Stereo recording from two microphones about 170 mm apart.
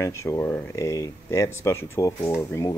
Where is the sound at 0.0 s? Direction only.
15° left (ahead or behind).